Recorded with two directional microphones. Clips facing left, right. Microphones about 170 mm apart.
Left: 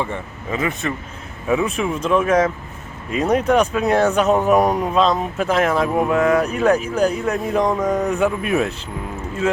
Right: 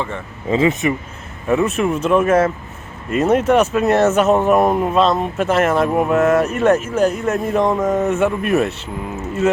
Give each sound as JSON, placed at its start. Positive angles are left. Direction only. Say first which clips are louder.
{"t": 0.5, "sound": "speech", "louder": "right 7 dB", "side_deg": -25}
{"t": 1.5, "sound": "speech", "louder": "right 3 dB", "side_deg": 0}